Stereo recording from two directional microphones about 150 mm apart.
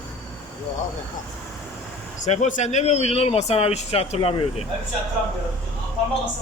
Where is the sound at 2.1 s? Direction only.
50° left (ahead or behind).